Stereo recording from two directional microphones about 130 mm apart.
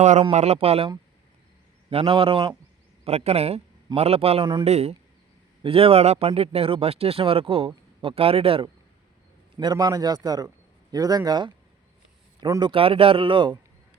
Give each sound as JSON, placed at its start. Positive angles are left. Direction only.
{"t": 0.0, "sound": "a man's voice", "side_deg": -65}
{"t": 1.9, "sound": "speech", "side_deg": -45}
{"t": 9.6, "sound": "a man's voice", "side_deg": -35}